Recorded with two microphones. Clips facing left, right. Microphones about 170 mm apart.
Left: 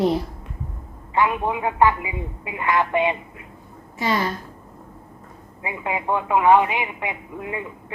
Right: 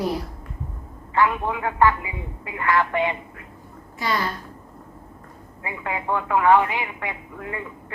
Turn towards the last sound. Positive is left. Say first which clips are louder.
# left 2 dB
turn(degrees=20)  # may be behind; listen again after turning